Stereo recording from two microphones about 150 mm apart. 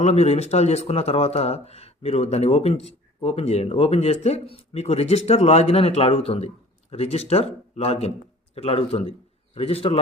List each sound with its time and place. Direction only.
0.0 s a man's voice: 45° left (ahead or behind)